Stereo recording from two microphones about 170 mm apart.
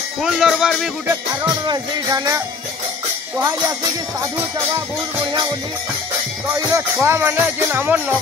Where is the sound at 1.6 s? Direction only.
25° right (ahead or behind).